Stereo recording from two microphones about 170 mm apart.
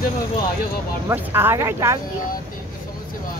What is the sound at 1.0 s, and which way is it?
Speech, 15° right (ahead or behind).